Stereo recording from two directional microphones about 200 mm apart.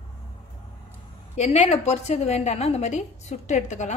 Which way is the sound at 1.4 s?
30° left (ahead or behind).